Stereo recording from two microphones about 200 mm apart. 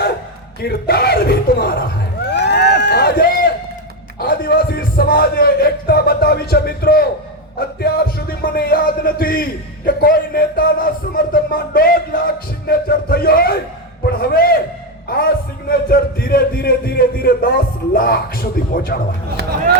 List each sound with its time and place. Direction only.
0.6 s music: 50° left (ahead or behind)
2.3 s run: 60° left (ahead or behind)
4.2 s music: 50° left (ahead or behind)
14.0 s a man's voice: 50° left (ahead or behind)
15.7 s music: 50° left (ahead or behind)
19.4 s speech: 55° right (ahead or behind)